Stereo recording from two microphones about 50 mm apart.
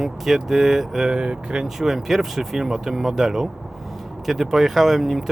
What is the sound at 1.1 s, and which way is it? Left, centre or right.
Speech, centre.